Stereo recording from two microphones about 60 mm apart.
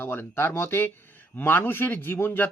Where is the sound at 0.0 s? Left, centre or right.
Left.